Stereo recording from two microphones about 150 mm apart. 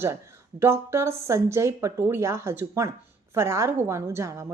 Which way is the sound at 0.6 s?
15° right (ahead or behind).